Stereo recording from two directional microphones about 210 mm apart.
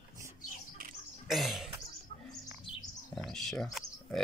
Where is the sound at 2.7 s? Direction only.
25° left (ahead or behind).